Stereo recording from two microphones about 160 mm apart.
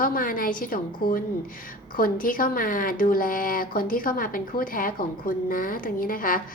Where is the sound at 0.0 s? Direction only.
60° left (ahead or behind).